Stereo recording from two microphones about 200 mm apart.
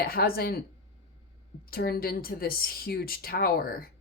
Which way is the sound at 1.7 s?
50° left (ahead or behind).